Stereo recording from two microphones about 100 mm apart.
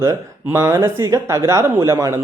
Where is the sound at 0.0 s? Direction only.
30° right (ahead or behind).